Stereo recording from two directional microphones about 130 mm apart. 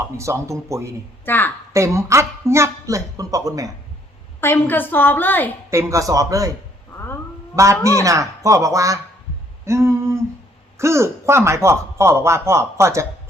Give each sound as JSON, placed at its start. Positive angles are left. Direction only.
{"t": 0.2, "sound": "speech", "side_deg": -20}
{"t": 1.2, "sound": "a woman's voice", "side_deg": 15}
{"t": 1.7, "sound": "speech", "side_deg": -20}
{"t": 4.4, "sound": "a woman's voice", "side_deg": 15}
{"t": 5.7, "sound": "speech", "side_deg": -25}
{"t": 7.5, "sound": "a man's voice", "side_deg": -25}